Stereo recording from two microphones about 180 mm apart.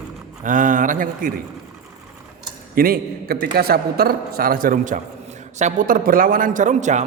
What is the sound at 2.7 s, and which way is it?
A man's voice, 55° right (ahead or behind).